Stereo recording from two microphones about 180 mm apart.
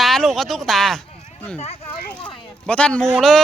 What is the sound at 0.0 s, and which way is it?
Speech, centre (ahead or behind).